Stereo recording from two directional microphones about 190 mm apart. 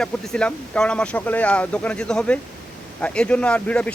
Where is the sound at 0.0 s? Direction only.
5° left (ahead or behind).